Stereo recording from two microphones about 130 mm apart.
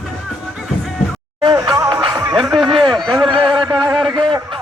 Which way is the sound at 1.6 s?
25° right (ahead or behind).